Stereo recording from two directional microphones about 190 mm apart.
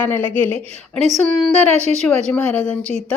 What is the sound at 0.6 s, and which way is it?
Speech, 35° right (ahead or behind).